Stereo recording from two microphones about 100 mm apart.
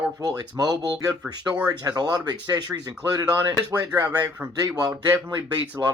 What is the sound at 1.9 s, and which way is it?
Speech, 40° right (ahead or behind).